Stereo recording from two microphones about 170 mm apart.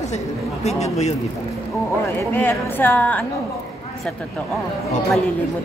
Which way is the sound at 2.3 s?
10° left (ahead or behind).